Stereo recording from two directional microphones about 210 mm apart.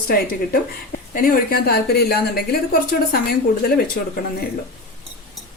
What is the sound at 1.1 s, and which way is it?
A woman's voice, 40° left (ahead or behind).